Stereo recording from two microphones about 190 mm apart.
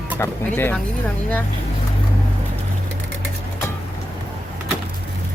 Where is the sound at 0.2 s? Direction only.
10° left (ahead or behind).